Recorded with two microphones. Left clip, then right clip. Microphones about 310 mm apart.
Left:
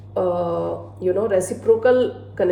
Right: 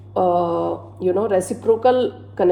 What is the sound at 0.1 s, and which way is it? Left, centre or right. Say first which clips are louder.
A woman's voice: right 3 dB; right.